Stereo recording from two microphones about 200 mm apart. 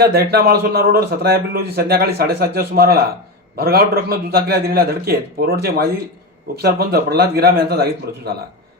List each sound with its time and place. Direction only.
0.0 s a man's voice: 50° right (ahead or behind)